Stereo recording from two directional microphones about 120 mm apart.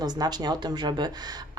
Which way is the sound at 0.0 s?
35° right (ahead or behind).